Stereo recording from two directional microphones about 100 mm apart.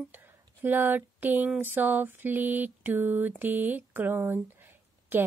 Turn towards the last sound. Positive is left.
turn(degrees=-20)  # may be behind; listen again after turning